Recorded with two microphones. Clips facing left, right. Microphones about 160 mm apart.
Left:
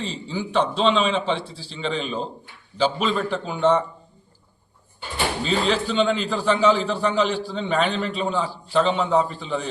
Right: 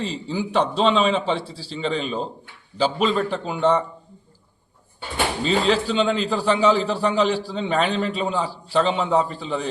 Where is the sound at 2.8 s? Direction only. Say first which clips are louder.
Right 1 dB; 35° right (ahead or behind).